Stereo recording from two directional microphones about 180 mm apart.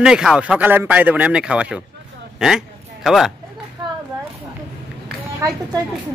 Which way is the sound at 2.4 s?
Centre (ahead or behind).